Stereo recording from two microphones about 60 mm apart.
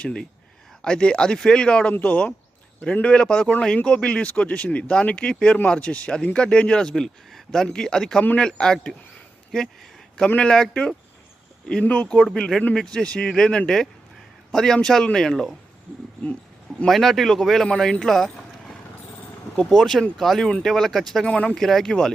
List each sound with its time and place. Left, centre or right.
0.0 s speech: centre
1.9 s speech: left
10.2 s speech: left
10.5 s speech: centre
11.8 s speech: left
12.1 s speech: centre
16.8 s speech: centre
18.0 s boat: centre
19.5 s speech: centre
21.2 s speech: centre
21.5 s speech: centre